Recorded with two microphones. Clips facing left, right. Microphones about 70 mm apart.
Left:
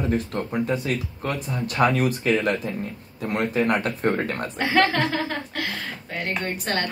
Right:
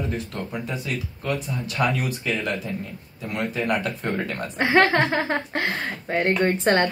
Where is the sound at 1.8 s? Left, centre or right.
Left.